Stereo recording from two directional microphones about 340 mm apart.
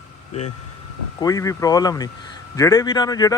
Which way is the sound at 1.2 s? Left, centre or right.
Centre.